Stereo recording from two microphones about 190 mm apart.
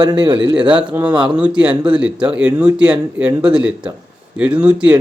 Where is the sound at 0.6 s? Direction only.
5° right (ahead or behind).